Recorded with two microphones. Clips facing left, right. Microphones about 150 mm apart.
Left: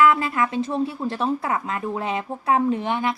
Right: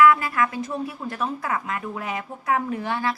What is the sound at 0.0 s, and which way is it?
Speech, 25° left (ahead or behind).